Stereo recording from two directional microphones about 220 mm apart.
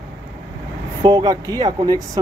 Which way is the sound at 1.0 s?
15° right (ahead or behind).